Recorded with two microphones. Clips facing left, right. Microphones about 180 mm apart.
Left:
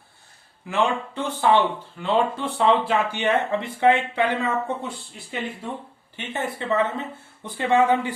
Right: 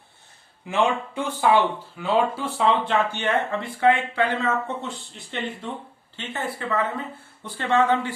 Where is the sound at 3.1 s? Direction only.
15° left (ahead or behind).